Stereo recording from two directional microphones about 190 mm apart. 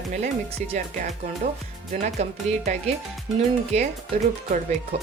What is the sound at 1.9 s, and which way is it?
Speech, 40° right (ahead or behind).